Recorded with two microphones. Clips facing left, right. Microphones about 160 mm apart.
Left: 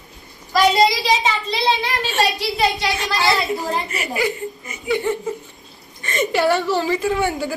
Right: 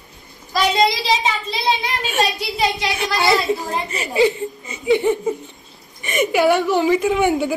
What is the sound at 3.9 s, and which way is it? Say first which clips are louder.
A woman's voice: right 5 dB; 30° right (ahead or behind).